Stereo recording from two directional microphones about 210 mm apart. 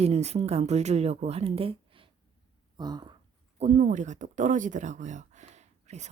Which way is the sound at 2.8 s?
20° right (ahead or behind).